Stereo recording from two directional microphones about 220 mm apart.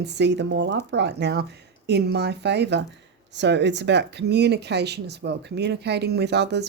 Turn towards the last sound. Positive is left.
turn(degrees=-50)  # may be behind; listen again after turning